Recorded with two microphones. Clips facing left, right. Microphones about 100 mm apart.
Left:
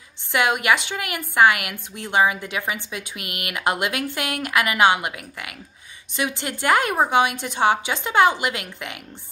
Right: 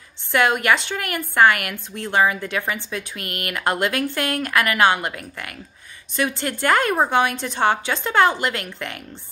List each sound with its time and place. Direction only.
0.3 s a woman's voice: 15° left (ahead or behind)